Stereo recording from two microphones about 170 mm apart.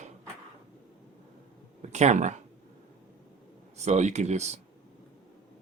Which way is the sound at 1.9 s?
40° right (ahead or behind).